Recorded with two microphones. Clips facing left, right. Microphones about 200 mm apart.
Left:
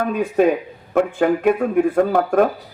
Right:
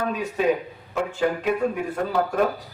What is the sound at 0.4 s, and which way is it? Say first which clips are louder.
A man's voice: left 6 dB; 50° left (ahead or behind).